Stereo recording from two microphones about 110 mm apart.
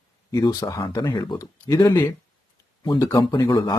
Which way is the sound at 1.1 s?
45° left (ahead or behind).